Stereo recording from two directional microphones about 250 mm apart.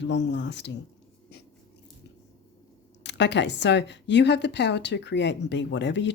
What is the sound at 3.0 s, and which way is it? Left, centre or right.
A woman's voice, left.